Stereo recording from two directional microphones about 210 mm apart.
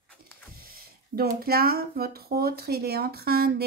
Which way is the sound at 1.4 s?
45° right (ahead or behind).